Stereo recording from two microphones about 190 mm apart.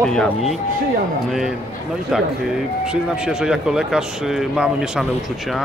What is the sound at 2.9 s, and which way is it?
Speech, 5° right (ahead or behind).